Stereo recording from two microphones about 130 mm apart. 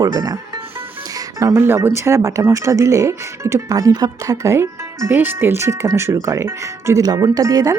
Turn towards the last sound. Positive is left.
turn(degrees=-25)  # may be behind; listen again after turning